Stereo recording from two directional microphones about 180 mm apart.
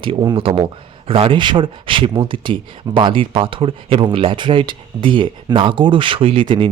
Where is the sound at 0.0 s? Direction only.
25° right (ahead or behind).